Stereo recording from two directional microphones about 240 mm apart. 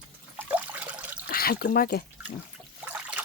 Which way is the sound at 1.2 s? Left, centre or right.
Left.